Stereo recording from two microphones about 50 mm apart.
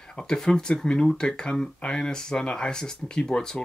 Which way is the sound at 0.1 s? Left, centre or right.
Centre.